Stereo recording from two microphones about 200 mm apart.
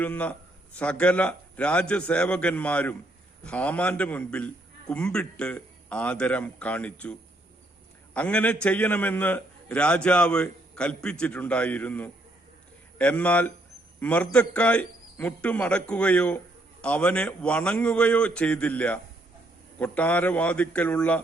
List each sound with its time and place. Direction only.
0.0 s a man's voice: 10° left (ahead or behind)